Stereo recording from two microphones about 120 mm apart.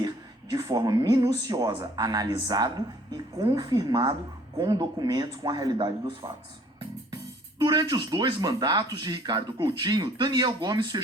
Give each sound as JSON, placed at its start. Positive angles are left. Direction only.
{"t": 0.5, "sound": "speech", "side_deg": -35}
{"t": 7.6, "sound": "speech", "side_deg": -35}